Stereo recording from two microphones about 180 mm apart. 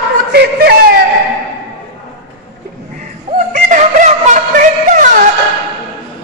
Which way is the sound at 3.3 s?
45° right (ahead or behind).